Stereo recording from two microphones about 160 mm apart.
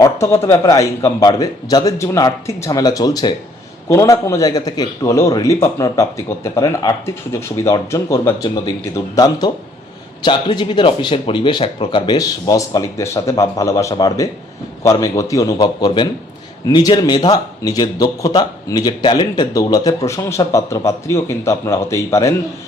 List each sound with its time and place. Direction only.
0.0 s a man's voice: 20° left (ahead or behind)